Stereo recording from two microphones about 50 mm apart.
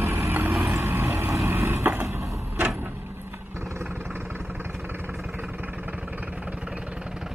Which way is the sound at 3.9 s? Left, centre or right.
Right.